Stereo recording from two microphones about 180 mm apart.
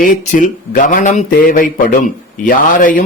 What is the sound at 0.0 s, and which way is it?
Speech, 45° left (ahead or behind).